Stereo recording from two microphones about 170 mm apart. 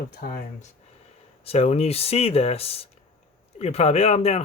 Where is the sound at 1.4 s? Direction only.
35° left (ahead or behind).